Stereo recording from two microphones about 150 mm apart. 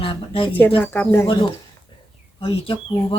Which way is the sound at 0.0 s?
35° left (ahead or behind).